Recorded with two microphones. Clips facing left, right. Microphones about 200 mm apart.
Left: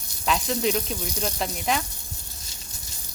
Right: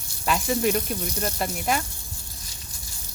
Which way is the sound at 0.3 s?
5° right (ahead or behind).